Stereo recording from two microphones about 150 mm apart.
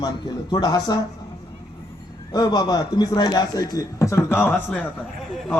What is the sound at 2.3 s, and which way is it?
Speech, 25° left (ahead or behind).